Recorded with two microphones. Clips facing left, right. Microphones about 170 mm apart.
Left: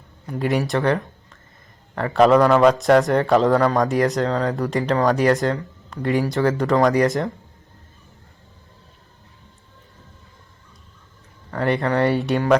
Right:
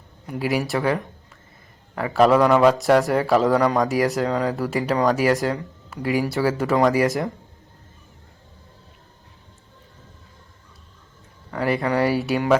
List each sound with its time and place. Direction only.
0.3 s speech: 5° right (ahead or behind)
11.5 s speech: 5° right (ahead or behind)